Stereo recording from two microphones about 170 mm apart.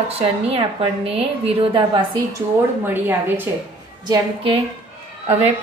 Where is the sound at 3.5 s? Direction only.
15° right (ahead or behind).